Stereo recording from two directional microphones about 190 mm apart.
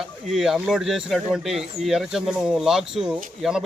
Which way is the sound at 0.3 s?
Centre (ahead or behind).